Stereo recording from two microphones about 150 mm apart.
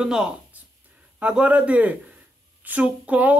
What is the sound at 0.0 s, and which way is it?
A man's voice, 5° right (ahead or behind).